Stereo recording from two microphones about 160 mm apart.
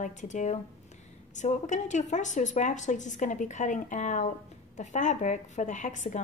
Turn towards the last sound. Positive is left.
turn(degrees=50)  # may be behind; listen again after turning